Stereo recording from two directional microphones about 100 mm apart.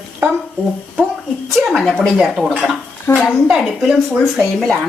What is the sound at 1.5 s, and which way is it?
A woman's voice, 5° left (ahead or behind).